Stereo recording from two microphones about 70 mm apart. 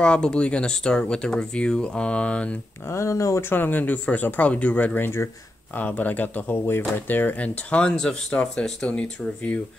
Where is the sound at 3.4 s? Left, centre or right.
Left.